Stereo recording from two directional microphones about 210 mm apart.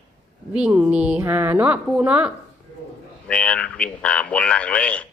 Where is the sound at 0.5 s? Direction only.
5° right (ahead or behind).